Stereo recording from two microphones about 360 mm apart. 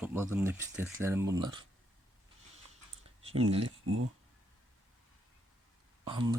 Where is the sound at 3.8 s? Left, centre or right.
Right.